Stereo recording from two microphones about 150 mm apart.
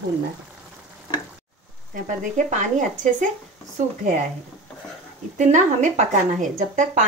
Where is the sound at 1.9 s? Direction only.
60° right (ahead or behind).